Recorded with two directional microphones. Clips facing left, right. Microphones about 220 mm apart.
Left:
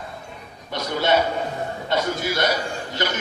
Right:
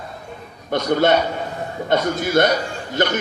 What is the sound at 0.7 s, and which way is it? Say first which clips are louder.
Speech: right 8 dB; 50° right (ahead or behind).